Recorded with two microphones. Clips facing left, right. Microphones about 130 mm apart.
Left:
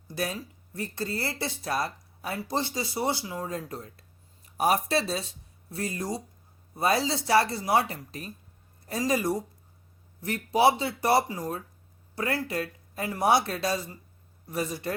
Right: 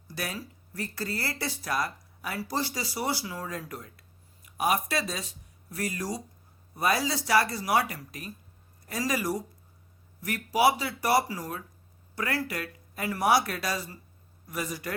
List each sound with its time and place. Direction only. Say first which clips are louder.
0.1 s speech: left 4 dB; 25° left (ahead or behind)